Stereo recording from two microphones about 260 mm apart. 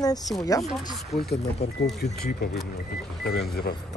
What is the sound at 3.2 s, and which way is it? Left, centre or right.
Speech, left.